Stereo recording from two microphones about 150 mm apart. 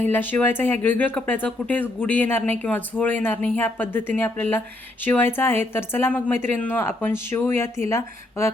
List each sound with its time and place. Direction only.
0.0 s speech: 15° left (ahead or behind)